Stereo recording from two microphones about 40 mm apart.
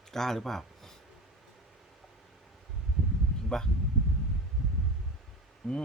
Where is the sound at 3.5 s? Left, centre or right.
Centre.